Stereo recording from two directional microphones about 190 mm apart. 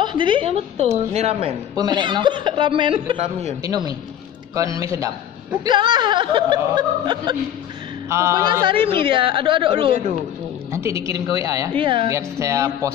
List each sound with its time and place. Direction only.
0.0 s a woman's voice: 25° right (ahead or behind)
1.8 s a man's voice: 25° right (ahead or behind)
10.7 s a woman's voice: 15° right (ahead or behind)
12.1 s a woman's voice: 15° right (ahead or behind)